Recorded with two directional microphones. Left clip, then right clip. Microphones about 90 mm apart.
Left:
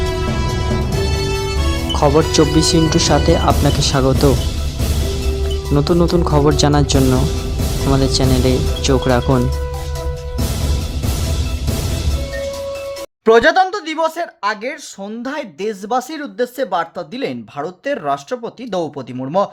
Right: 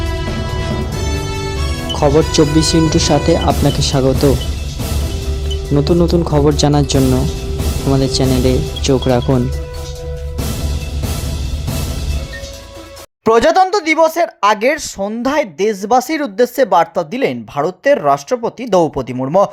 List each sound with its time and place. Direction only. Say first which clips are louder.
1.9 s speech: right 1 dB; centre (ahead or behind)
5.7 s speech: right 2 dB; centre (ahead or behind)
13.2 s speech: right 1 dB; 55° right (ahead or behind); by 14.3 s 40° right (ahead or behind)
14.4 s speech: right 9 dB; 80° right
14.9 s speech: right 9 dB; 45° right (ahead or behind)
15.5 s speech: right 3 dB; 30° right (ahead or behind)
16.2 s speech: right 7 dB; 50° right (ahead or behind)